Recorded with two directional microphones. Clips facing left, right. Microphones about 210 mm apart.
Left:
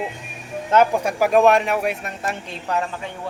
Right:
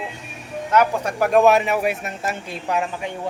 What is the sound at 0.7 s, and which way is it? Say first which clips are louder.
Speech: left 2 dB; 30° left (ahead or behind).